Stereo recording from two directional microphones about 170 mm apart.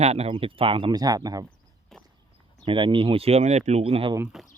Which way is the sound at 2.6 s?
30° right (ahead or behind).